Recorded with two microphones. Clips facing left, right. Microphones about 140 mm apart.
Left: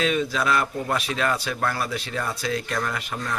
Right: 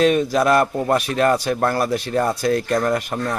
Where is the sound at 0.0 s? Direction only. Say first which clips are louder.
Right 7 dB; 45° right (ahead or behind).